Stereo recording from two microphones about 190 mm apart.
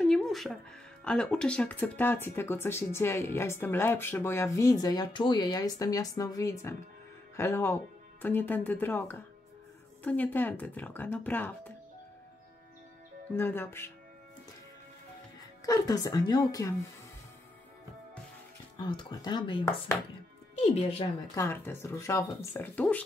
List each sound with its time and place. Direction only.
0.0 s speech: centre (ahead or behind)
13.4 s speech: 10° left (ahead or behind)
15.6 s a woman's voice: 20° left (ahead or behind)
18.8 s a woman's voice: 25° left (ahead or behind)
21.4 s speech: 15° left (ahead or behind)